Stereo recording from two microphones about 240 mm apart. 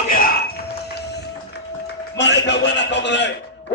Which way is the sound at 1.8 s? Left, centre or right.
Left.